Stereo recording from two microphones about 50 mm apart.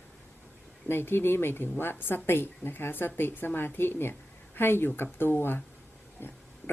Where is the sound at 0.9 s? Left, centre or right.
Left.